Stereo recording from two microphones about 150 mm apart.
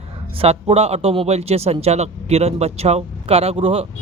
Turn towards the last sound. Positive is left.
turn(degrees=-40)  # may be behind; listen again after turning